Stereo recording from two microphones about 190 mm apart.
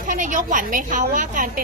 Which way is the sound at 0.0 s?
45° right (ahead or behind).